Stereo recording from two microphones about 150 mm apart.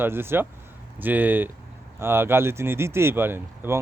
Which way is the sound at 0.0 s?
15° right (ahead or behind).